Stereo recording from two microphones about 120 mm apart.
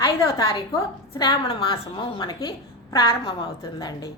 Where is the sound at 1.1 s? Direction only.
45° left (ahead or behind).